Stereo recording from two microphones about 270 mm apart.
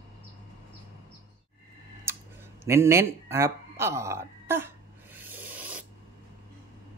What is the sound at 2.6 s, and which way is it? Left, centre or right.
Speech, centre.